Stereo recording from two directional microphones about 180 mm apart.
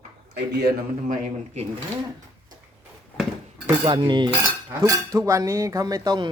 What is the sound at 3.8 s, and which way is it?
Speech, 25° right (ahead or behind).